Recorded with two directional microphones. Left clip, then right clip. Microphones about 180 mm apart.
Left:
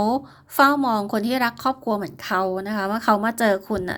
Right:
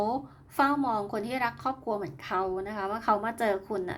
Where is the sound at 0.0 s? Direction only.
35° left (ahead or behind).